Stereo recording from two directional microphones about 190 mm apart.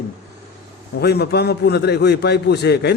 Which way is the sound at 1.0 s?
60° left (ahead or behind).